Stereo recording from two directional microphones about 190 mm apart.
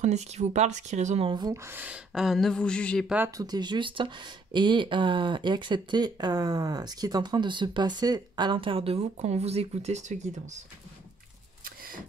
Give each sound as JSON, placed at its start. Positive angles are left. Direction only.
{"t": 0.0, "sound": "speech", "side_deg": -35}
{"t": 3.3, "sound": "speech", "side_deg": -20}
{"t": 11.6, "sound": "a sound", "side_deg": -50}